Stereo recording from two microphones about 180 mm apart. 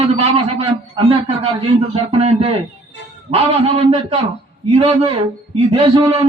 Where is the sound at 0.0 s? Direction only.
35° right (ahead or behind).